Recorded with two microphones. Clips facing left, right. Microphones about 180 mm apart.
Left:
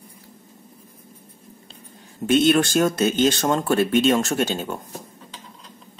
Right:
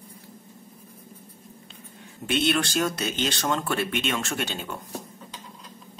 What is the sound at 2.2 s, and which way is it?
Speech, 45° left (ahead or behind).